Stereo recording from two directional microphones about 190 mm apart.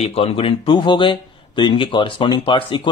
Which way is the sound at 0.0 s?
30° left (ahead or behind).